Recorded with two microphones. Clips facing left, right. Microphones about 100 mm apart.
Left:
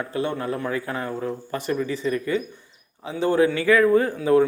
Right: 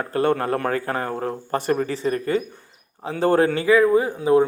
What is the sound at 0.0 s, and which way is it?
Speech, 50° right (ahead or behind).